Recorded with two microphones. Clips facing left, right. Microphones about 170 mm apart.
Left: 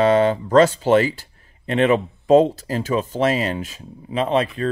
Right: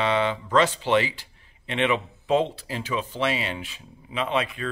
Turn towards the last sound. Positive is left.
turn(degrees=35)  # may be behind; listen again after turning